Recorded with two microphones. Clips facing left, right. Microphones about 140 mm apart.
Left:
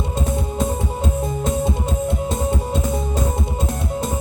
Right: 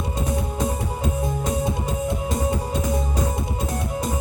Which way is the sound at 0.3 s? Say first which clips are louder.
Left 3 dB; 25° left (ahead or behind).